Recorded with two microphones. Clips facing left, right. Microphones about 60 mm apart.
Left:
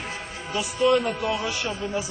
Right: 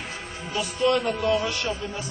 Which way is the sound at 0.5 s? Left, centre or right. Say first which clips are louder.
Left 2 dB; centre.